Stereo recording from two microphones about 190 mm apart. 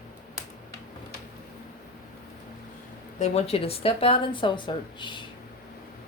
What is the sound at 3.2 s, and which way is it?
Speech, 35° left (ahead or behind).